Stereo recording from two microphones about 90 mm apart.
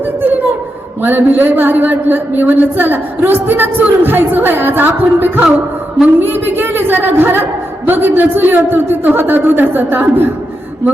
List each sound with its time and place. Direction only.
0.0 s a man's voice: 20° right (ahead or behind)